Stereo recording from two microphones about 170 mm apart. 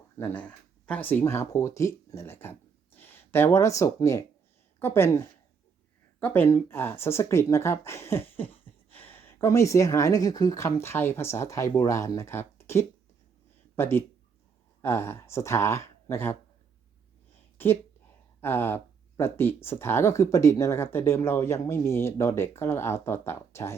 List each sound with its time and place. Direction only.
0.2 s speech: 10° left (ahead or behind)
17.6 s speech: 10° left (ahead or behind)